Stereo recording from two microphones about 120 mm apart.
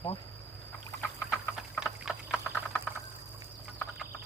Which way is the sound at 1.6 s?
5° right (ahead or behind).